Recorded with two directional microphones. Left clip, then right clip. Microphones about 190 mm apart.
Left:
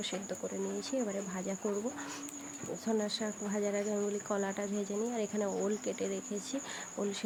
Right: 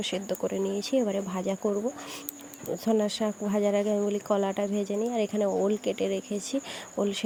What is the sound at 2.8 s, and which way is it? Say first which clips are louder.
Speech: right 8 dB; 35° right (ahead or behind).